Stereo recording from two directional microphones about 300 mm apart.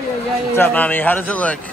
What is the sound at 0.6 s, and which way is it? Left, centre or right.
Speech, centre.